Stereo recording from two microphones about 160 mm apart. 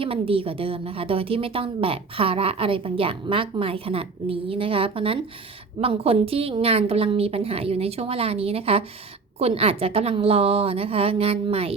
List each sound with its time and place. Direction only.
0.0 s a woman's voice: 35° right (ahead or behind)